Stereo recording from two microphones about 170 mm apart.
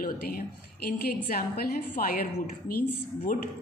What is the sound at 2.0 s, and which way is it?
Speech, 60° left (ahead or behind).